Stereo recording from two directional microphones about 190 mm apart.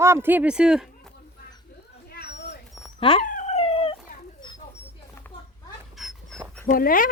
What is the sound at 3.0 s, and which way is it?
Dog, 30° left (ahead or behind).